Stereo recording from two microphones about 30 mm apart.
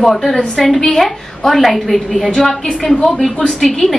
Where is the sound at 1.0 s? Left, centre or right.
Centre.